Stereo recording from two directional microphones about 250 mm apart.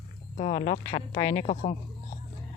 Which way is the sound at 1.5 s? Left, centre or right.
Left.